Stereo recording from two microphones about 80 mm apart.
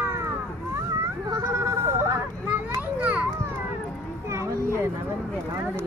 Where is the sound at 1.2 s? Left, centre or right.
Right.